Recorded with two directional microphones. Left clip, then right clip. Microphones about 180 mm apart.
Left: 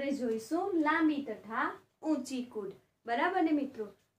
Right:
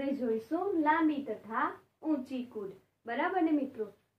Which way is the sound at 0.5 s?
10° left (ahead or behind).